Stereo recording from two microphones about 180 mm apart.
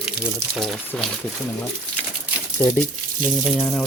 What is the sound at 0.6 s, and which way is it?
Speech, centre (ahead or behind).